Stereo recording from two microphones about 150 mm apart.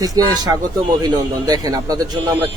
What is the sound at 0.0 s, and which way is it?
Speech, 25° right (ahead or behind).